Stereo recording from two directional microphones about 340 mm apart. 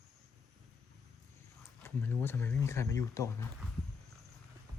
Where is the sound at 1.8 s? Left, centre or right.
Centre.